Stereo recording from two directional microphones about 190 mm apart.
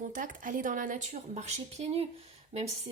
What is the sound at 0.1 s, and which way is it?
A woman's voice, 45° right (ahead or behind).